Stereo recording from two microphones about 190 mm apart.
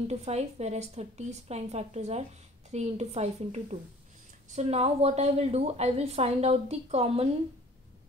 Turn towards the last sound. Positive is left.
turn(degrees=-30)  # may be behind; listen again after turning